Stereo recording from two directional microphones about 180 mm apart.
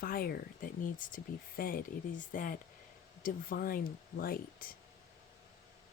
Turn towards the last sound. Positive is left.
turn(degrees=55)  # may be behind; listen again after turning